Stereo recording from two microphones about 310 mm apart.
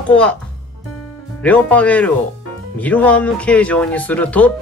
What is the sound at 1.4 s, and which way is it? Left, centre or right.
Speech, centre.